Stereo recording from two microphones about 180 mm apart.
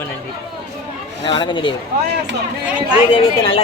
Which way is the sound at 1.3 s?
25° left (ahead or behind).